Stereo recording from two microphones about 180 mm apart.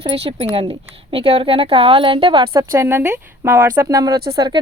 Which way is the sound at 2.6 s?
15° right (ahead or behind).